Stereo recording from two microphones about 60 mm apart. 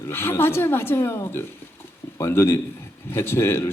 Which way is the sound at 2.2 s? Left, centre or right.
Left.